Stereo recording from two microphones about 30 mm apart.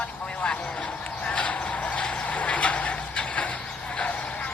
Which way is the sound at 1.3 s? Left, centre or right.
Left.